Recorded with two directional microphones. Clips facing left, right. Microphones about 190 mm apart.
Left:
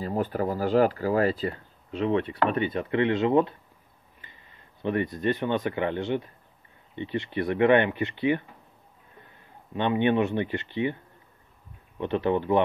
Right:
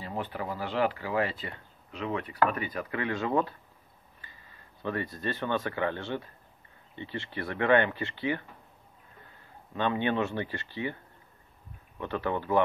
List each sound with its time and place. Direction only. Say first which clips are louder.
0.0 s speech: left 8 dB; 40° left (ahead or behind); by 8.5 s 20° left (ahead or behind)
9.8 s speech: left 5 dB; 20° left (ahead or behind)
12.0 s speech: left 6 dB; 20° left (ahead or behind)